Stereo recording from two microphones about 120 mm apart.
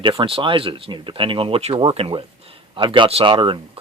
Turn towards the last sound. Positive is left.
turn(degrees=-45)  # may be behind; listen again after turning